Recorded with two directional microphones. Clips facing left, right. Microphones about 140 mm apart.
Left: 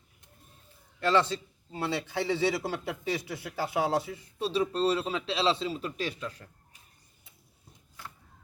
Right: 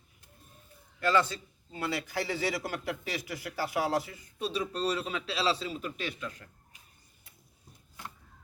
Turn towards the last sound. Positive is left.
turn(degrees=35)  # may be behind; listen again after turning